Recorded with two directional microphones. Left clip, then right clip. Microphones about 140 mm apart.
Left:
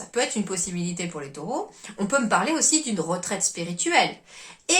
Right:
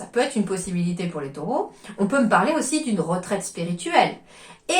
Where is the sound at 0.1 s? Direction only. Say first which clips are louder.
Right 3 dB; 20° left (ahead or behind).